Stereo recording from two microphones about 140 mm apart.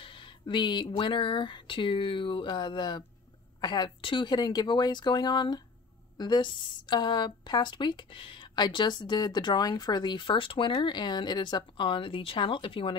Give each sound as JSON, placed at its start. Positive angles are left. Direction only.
{"t": 0.0, "sound": "a woman's voice", "side_deg": 35}